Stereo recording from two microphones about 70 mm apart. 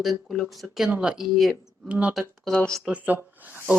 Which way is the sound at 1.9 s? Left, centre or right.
Centre.